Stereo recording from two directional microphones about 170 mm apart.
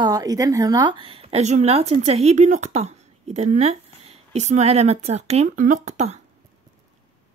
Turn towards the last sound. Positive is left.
turn(degrees=-40)  # may be behind; listen again after turning